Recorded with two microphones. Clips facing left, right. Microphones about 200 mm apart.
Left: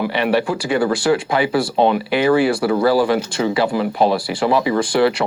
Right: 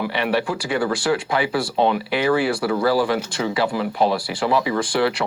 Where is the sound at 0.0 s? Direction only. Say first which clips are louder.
Left 4 dB; 20° left (ahead or behind).